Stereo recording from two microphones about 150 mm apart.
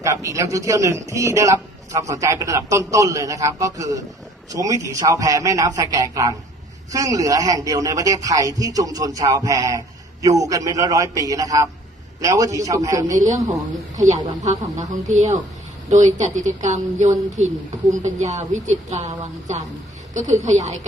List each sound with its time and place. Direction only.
0.0 s a man's voice: 20° right (ahead or behind)
13.1 s a woman's voice: 55° right (ahead or behind)